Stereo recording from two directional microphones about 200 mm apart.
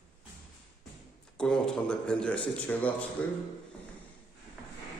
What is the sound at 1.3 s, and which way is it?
A man's voice, 5° left (ahead or behind).